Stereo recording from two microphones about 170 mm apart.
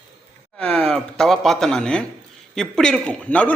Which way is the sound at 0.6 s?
5° left (ahead or behind).